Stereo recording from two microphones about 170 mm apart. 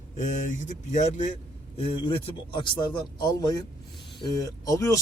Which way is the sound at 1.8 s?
30° left (ahead or behind).